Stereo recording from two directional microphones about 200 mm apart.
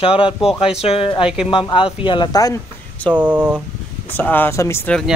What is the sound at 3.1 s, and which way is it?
Speech, 10° right (ahead or behind).